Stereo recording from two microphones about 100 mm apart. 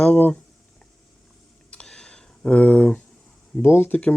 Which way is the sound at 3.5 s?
20° left (ahead or behind).